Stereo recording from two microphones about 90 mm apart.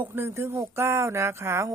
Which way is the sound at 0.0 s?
25° right (ahead or behind).